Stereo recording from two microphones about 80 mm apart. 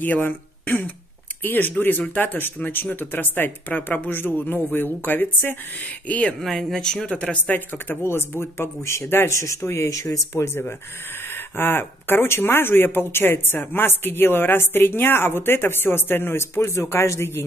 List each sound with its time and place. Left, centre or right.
0.0 s speech: left
6.4 s speech: centre; by 17.4 s left